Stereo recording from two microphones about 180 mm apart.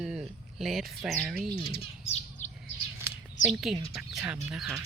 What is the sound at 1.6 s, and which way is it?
Bird, 35° left (ahead or behind).